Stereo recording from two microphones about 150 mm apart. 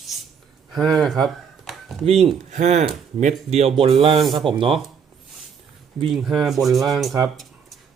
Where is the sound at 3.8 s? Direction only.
40° right (ahead or behind).